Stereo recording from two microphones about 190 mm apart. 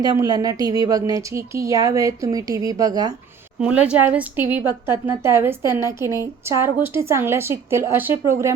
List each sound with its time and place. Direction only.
0.0 s speech: 20° right (ahead or behind)
3.6 s speech: 5° right (ahead or behind)